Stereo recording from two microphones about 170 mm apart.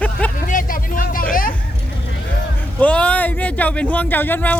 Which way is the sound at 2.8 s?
10° left (ahead or behind).